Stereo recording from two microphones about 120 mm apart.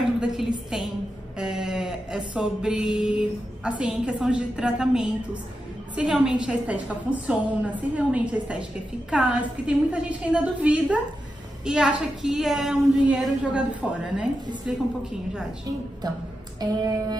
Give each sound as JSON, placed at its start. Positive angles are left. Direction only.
{"t": 0.2, "sound": "a woman's voice", "side_deg": -5}
{"t": 1.4, "sound": "music", "side_deg": -5}
{"t": 11.6, "sound": "a woman's voice", "side_deg": -5}
{"t": 13.8, "sound": "music", "side_deg": -10}
{"t": 14.7, "sound": "a woman's voice", "side_deg": -5}
{"t": 16.5, "sound": "a sound", "side_deg": -35}